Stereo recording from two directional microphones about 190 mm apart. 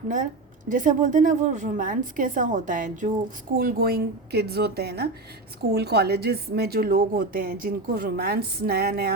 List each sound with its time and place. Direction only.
0.7 s a woman's voice: 45° right (ahead or behind)